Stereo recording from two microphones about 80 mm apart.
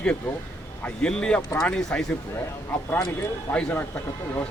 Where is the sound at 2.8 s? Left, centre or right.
Left.